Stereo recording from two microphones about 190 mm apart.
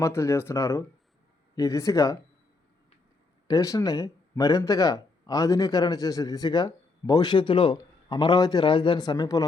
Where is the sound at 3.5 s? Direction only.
20° left (ahead or behind).